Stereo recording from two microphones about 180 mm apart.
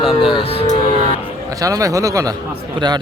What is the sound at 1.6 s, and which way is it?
Speech, 20° right (ahead or behind).